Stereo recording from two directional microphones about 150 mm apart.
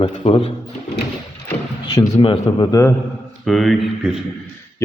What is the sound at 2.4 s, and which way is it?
Speech, 25° left (ahead or behind).